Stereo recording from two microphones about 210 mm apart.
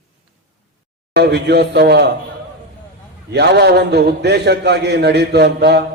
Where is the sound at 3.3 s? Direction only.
55° right (ahead or behind).